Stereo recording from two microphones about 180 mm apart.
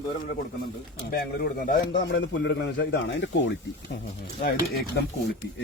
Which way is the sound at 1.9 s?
75° left (ahead or behind).